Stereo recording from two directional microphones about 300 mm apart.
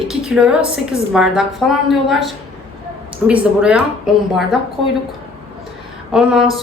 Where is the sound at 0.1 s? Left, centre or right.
Centre.